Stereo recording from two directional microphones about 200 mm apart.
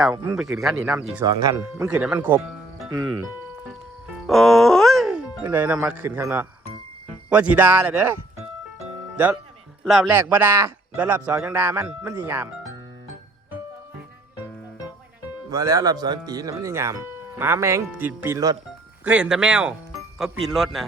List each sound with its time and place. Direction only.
0.3 s speech: centre (ahead or behind)
1.2 s speech: 20° right (ahead or behind)
4.3 s speech: centre (ahead or behind)
8.8 s music: 5° right (ahead or behind)
9.8 s speech: centre (ahead or behind)
15.4 s speech: 20° right (ahead or behind); by 20.8 s centre (ahead or behind)